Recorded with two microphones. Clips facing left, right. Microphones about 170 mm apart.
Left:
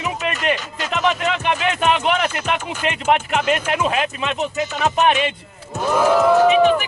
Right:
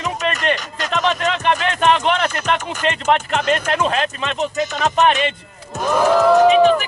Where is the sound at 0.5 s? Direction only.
10° left (ahead or behind).